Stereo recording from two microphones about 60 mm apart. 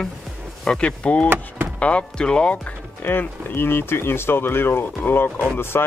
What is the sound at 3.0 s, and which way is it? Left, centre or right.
Speech, left.